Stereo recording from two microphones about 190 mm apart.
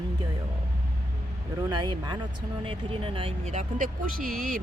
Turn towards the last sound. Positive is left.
turn(degrees=-45)  # may be behind; listen again after turning